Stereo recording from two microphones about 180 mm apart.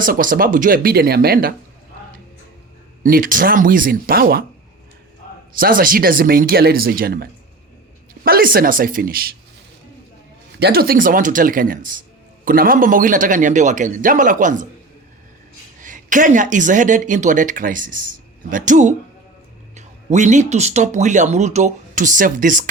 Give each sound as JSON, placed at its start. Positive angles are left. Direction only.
{"t": 0.0, "sound": "speech", "side_deg": -50}
{"t": 3.0, "sound": "speech", "side_deg": -50}
{"t": 5.5, "sound": "speech", "side_deg": -50}
{"t": 10.6, "sound": "speech", "side_deg": -55}
{"t": 15.8, "sound": "speech", "side_deg": -45}